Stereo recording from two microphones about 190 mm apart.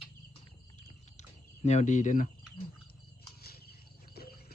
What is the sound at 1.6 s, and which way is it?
Speech, 35° left (ahead or behind).